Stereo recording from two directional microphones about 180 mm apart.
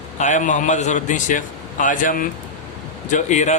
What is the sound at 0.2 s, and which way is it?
Speech, 45° left (ahead or behind).